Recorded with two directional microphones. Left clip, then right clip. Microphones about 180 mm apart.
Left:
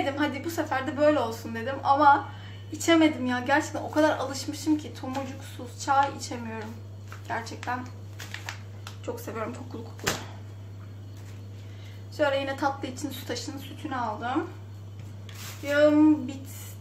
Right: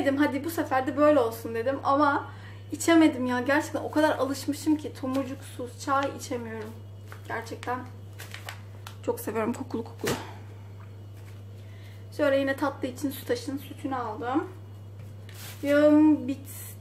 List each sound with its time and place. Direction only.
0.0 s speech: 30° right (ahead or behind)
8.8 s speech: 50° right (ahead or behind)
12.2 s speech: 30° right (ahead or behind)
15.7 s a sound: 30° right (ahead or behind)